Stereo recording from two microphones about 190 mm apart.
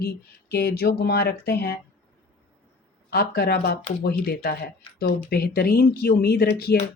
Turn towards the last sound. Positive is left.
turn(degrees=55)  # may be behind; listen again after turning